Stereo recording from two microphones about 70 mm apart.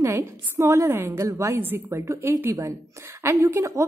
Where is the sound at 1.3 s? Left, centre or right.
Right.